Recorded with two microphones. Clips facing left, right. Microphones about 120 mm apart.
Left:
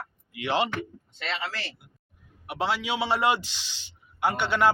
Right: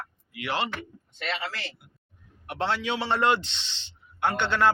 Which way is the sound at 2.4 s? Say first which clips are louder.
Even; 10° left (ahead or behind).